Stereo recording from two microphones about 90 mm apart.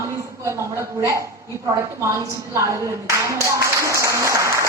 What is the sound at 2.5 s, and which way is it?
Speech, 35° right (ahead or behind).